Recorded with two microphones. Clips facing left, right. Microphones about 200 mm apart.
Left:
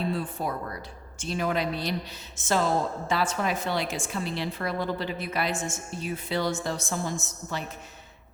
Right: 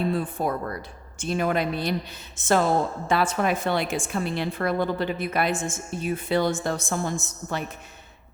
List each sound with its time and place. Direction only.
0.1 s a woman's voice: 50° right (ahead or behind)